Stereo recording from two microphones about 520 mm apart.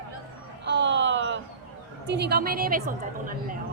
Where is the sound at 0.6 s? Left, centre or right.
Centre.